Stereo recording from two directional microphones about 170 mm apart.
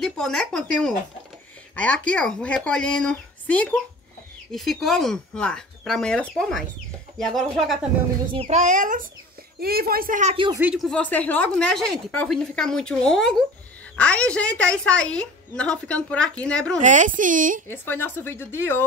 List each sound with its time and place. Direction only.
0.0 s a woman's voice: centre (ahead or behind)
8.3 s speech: 40° right (ahead or behind)
9.6 s a woman's voice: 65° right (ahead or behind)
10.3 s speech: 30° right (ahead or behind)
10.6 s a woman's voice: 5° right (ahead or behind)
16.8 s speech: 50° right (ahead or behind)
17.6 s speech: 15° left (ahead or behind)